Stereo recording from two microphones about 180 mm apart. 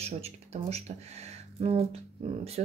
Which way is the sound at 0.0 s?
35° right (ahead or behind).